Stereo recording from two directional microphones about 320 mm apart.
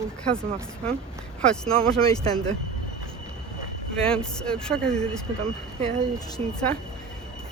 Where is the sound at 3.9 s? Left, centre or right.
Centre.